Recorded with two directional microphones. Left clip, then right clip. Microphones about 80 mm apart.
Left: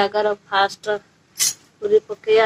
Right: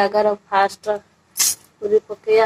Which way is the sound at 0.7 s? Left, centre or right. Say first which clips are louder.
Right 1 dB; left.